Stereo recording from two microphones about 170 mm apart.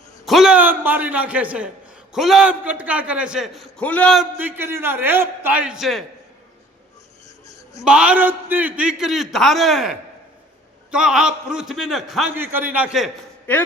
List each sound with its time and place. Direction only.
0.3 s a man's voice: centre (ahead or behind)
4.4 s a man's voice: 10° right (ahead or behind)
7.4 s a sound: 20° left (ahead or behind)
7.9 s a man's voice: 5° right (ahead or behind)
13.5 s speech: 10° left (ahead or behind)